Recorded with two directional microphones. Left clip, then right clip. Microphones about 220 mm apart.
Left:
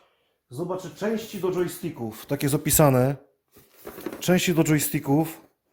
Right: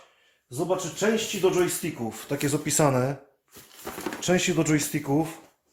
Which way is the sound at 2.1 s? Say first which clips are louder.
Left 2 dB; 50° left (ahead or behind).